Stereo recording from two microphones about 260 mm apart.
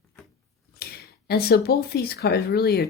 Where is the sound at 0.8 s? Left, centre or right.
Left.